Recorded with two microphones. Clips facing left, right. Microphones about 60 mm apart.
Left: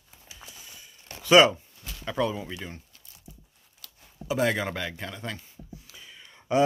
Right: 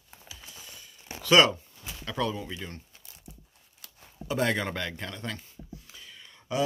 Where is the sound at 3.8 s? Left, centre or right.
Right.